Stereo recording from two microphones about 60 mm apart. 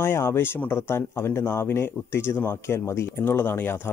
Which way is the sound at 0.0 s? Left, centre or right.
Left.